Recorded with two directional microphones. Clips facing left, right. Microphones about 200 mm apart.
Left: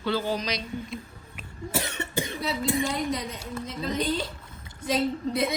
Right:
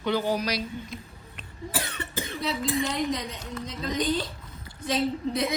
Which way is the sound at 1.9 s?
15° left (ahead or behind).